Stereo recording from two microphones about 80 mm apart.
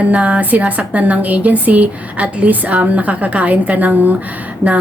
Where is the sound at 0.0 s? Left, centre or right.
Centre.